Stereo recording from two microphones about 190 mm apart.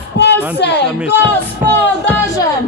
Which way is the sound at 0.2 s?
60° left (ahead or behind).